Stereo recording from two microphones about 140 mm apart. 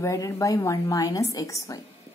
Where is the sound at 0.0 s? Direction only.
25° left (ahead or behind).